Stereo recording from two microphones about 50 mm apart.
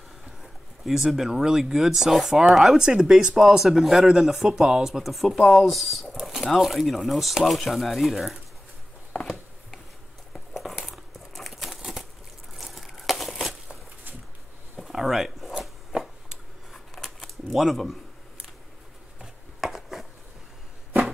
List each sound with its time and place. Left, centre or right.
0.4 s a sound: centre
1.1 s speech: centre
3.3 s speech: centre
10.3 s a sound: centre
10.9 s crumpling: centre
14.9 s zipper: centre
16.7 s scissors: centre
17.5 s speech: centre
19.2 s a sound: centre